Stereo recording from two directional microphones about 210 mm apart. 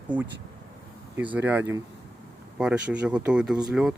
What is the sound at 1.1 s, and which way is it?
Speech, 5° right (ahead or behind).